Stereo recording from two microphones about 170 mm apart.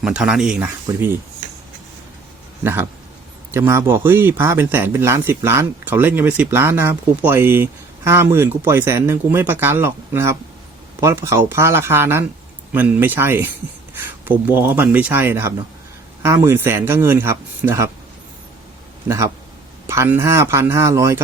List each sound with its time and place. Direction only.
0.0 s speech: 5° right (ahead or behind)
3.5 s speech: 15° right (ahead or behind)
19.0 s speech: 15° right (ahead or behind)